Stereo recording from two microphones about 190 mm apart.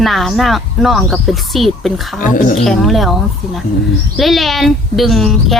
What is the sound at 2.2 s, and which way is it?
Speech, 45° left (ahead or behind).